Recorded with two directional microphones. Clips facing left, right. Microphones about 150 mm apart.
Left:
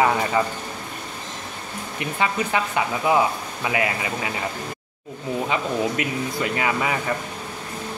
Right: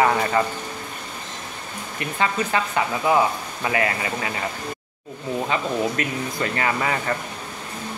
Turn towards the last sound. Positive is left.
turn(degrees=10)  # may be behind; listen again after turning